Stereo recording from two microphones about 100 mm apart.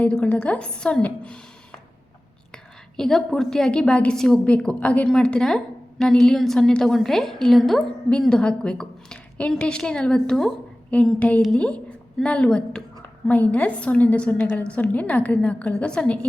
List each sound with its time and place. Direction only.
0.0 s a woman's voice: 15° left (ahead or behind)
2.9 s a woman's voice: 5° left (ahead or behind)